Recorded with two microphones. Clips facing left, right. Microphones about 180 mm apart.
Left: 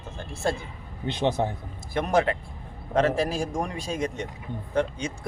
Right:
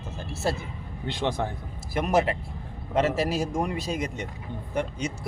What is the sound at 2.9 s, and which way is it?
Speech, 5° right (ahead or behind).